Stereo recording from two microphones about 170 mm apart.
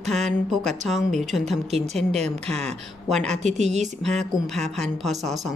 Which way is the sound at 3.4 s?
45° right (ahead or behind).